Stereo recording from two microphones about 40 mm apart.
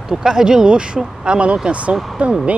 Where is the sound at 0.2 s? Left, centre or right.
Centre.